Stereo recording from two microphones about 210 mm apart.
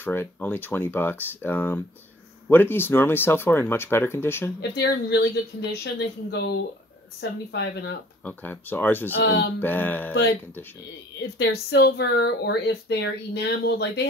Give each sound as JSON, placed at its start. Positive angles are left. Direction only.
{"t": 0.0, "sound": "speech", "side_deg": 10}
{"t": 4.6, "sound": "speech", "side_deg": 50}
{"t": 8.2, "sound": "speech", "side_deg": 10}
{"t": 9.1, "sound": "speech", "side_deg": 50}
{"t": 9.6, "sound": "speech", "side_deg": 10}
{"t": 11.1, "sound": "speech", "side_deg": 55}